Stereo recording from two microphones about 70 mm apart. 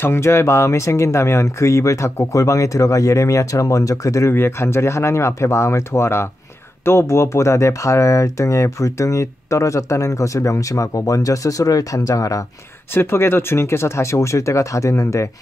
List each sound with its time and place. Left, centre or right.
0.0 s speech: left
4.3 s speech: left
12.9 s speech: left